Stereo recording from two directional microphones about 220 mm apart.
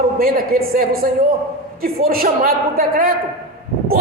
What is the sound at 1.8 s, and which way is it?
A man's voice, 40° right (ahead or behind).